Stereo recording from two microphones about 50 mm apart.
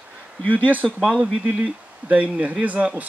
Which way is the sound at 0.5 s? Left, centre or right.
Right.